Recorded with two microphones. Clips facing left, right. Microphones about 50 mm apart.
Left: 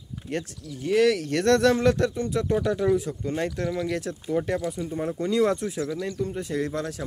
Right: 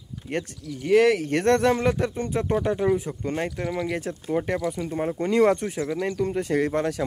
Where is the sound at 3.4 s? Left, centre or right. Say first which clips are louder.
Even; centre.